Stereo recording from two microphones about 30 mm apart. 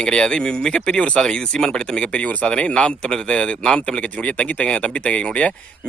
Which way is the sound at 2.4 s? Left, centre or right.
Left.